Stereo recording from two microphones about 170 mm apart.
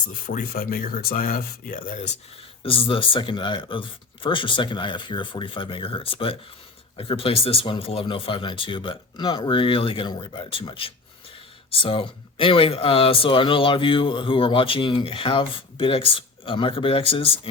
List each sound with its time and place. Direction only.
0.3 s speech: 55° left (ahead or behind)
2.6 s speech: 30° left (ahead or behind)